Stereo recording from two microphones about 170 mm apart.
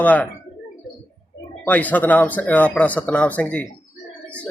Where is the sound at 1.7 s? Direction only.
10° left (ahead or behind).